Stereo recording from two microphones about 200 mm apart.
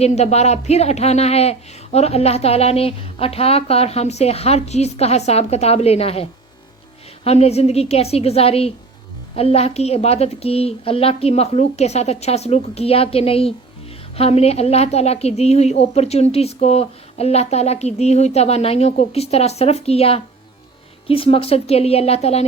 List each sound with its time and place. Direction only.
0.0 s speech: 35° left (ahead or behind)
7.3 s speech: 30° left (ahead or behind)